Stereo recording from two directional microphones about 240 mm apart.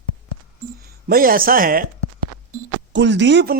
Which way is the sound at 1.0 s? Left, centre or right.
Right.